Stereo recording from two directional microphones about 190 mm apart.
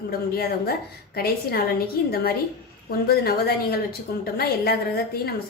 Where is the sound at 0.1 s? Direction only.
55° left (ahead or behind).